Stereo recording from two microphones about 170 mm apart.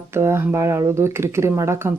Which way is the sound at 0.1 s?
15° right (ahead or behind).